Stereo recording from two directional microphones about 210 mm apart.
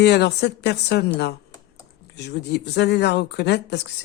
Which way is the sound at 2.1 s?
55° left (ahead or behind).